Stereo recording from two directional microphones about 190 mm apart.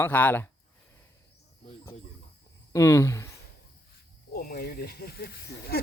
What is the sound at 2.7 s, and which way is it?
Speech, 15° left (ahead or behind).